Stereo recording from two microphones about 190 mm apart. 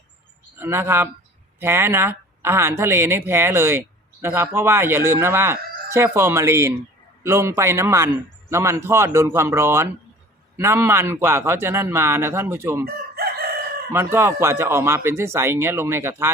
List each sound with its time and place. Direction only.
0.6 s speech: 10° right (ahead or behind)
12.8 s chicken: 55° right (ahead or behind)
13.9 s speech: 15° right (ahead or behind)